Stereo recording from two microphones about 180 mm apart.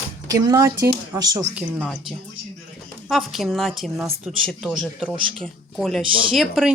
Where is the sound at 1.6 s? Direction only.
5° right (ahead or behind).